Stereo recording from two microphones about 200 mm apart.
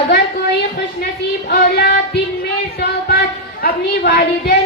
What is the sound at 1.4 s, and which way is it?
Speech, 55° left (ahead or behind).